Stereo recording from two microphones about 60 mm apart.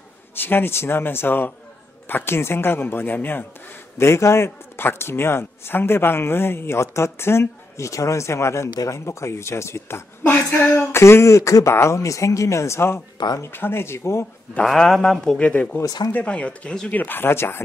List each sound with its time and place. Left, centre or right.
0.3 s speech: left
4.0 s speech: left
14.6 s speech: centre
15.3 s speech: left
16.9 s speech: left